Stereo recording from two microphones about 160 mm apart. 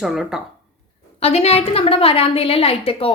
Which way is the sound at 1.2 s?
40° left (ahead or behind).